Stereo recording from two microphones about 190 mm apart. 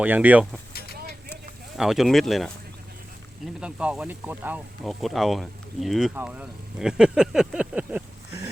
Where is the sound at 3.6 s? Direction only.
5° right (ahead or behind).